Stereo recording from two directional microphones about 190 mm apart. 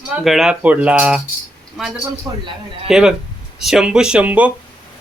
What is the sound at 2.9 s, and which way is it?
Speech, 5° right (ahead or behind).